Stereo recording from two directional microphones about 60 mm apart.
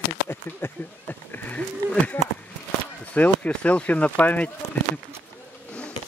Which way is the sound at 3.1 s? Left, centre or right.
Left.